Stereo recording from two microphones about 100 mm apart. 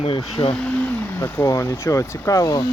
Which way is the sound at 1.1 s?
25° left (ahead or behind).